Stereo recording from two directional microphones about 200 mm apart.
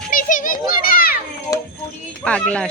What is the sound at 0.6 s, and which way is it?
Children playing, 45° left (ahead or behind).